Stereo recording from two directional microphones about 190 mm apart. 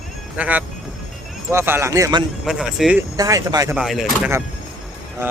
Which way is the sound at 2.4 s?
5° right (ahead or behind).